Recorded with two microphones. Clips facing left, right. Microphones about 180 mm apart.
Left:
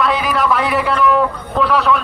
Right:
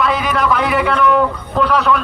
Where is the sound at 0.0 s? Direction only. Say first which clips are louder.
Even; centre (ahead or behind).